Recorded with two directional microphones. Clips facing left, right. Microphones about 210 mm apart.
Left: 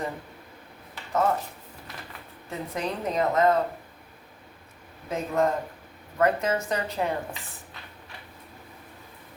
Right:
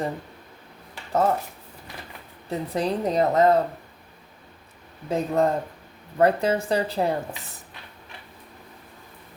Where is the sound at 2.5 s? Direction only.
35° right (ahead or behind).